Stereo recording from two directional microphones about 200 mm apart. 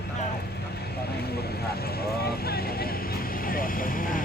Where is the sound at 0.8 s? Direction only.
55° left (ahead or behind).